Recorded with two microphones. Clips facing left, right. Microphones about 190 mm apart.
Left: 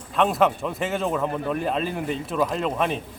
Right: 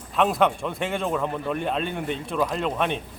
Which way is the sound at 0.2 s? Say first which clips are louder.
Left 1 dB; centre (ahead or behind).